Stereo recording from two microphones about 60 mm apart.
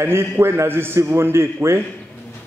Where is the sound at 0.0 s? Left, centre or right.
Right.